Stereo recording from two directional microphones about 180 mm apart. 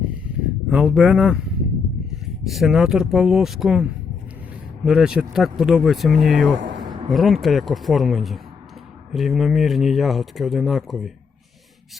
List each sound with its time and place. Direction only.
0.7 s speech: 5° right (ahead or behind)
2.5 s speech: centre (ahead or behind)
4.9 s speech: 5° right (ahead or behind)
6.6 s a sound: 80° right
7.1 s speech: centre (ahead or behind)